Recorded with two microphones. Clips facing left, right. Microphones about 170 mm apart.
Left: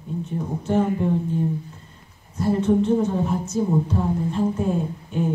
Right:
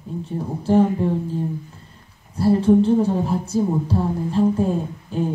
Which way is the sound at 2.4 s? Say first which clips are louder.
Right 4 dB; 35° right (ahead or behind).